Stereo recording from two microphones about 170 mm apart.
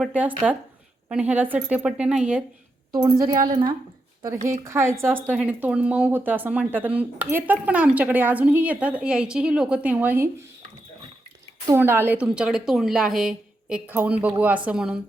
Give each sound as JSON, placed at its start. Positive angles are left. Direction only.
{"t": 0.0, "sound": "a woman's voice", "side_deg": -10}
{"t": 2.9, "sound": "a woman's voice", "side_deg": -20}
{"t": 11.7, "sound": "a woman's voice", "side_deg": -15}